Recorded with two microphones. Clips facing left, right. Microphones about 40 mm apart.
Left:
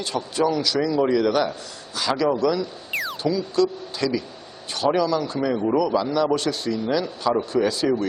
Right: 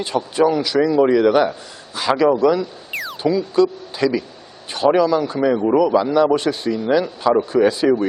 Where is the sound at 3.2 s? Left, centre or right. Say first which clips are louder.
Right 6 dB; centre.